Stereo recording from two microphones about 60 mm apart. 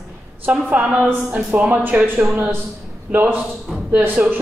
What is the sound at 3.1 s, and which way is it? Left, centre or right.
A man's voice, right.